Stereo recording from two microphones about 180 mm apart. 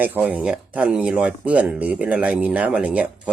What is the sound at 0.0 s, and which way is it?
Speech, 10° right (ahead or behind).